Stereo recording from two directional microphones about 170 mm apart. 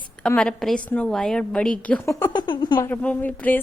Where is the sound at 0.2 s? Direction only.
5° left (ahead or behind).